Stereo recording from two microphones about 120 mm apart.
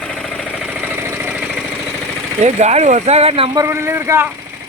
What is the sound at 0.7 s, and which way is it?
Vehicle, 10° right (ahead or behind).